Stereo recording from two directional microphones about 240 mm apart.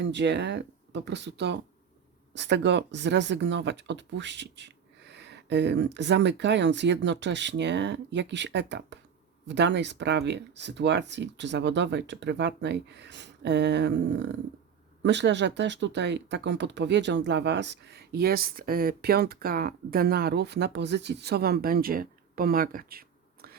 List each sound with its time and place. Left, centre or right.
0.0 s speech: right